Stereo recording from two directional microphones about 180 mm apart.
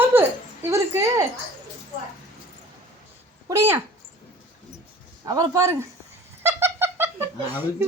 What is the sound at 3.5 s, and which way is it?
Speech, 15° right (ahead or behind).